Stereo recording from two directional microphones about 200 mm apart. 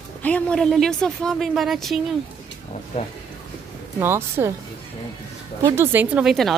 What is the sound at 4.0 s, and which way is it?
Speech, 10° right (ahead or behind).